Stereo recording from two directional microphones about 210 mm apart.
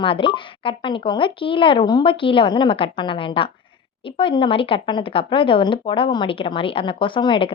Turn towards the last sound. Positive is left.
turn(degrees=25)  # may be behind; listen again after turning